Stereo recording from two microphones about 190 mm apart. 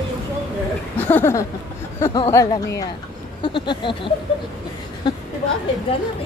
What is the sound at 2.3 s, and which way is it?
Speech, 20° left (ahead or behind).